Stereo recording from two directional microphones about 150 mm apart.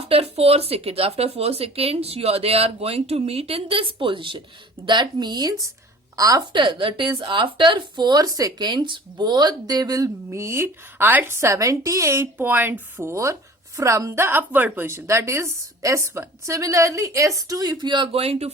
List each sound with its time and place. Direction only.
0.0 s speech: 40° right (ahead or behind)